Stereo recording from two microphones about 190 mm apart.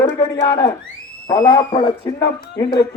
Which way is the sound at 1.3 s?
20° left (ahead or behind).